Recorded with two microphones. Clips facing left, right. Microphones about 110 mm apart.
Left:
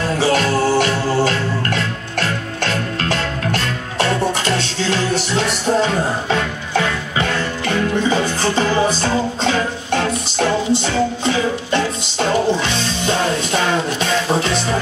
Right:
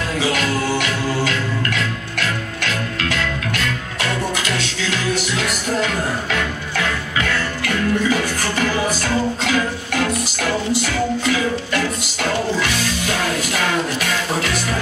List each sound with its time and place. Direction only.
0.1 s music: 35° left (ahead or behind)